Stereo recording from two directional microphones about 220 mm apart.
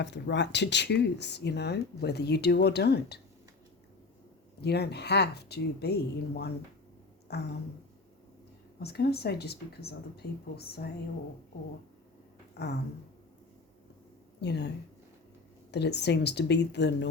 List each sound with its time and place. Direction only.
0.0 s speech: 55° left (ahead or behind)
4.6 s speech: 50° left (ahead or behind)
7.3 s a sound: 50° left (ahead or behind)
8.8 s speech: 45° left (ahead or behind)
12.6 s speech: 45° left (ahead or behind)
14.4 s speech: 50° left (ahead or behind)
15.7 s speech: 50° left (ahead or behind)